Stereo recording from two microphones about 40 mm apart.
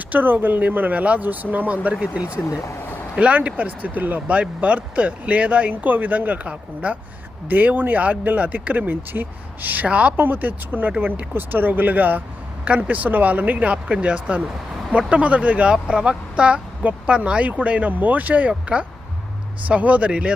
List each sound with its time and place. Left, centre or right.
0.1 s speech: right
3.3 s speech: right
4.3 s speech: right
7.5 s speech: right
9.8 s speech: right
10.2 s speech: right
12.6 s speech: right
13.7 s speech: right